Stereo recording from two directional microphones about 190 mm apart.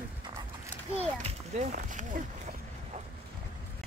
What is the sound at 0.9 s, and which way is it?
Children playing, 35° right (ahead or behind).